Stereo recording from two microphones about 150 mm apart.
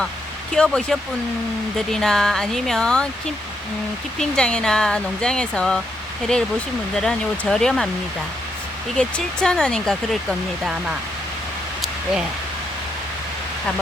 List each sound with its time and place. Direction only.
0.5 s speech: 5° left (ahead or behind)
6.9 s speech: 5° left (ahead or behind)
9.0 s speech: 5° left (ahead or behind)